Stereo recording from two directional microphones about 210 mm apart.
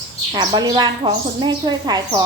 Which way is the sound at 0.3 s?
20° right (ahead or behind).